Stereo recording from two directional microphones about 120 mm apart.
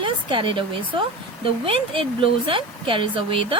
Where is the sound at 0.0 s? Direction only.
45° right (ahead or behind).